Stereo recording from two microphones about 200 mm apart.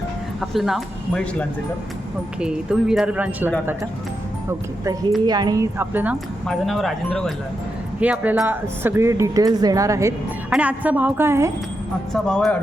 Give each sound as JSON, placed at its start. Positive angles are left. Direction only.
{"t": 0.5, "sound": "speech", "side_deg": 0}
{"t": 5.2, "sound": "speech", "side_deg": -20}
{"t": 12.1, "sound": "speech", "side_deg": 5}